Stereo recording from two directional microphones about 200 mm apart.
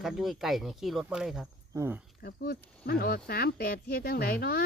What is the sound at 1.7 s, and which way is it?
Speech, 15° right (ahead or behind).